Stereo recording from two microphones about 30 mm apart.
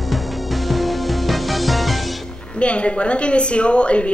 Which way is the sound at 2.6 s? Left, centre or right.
Left.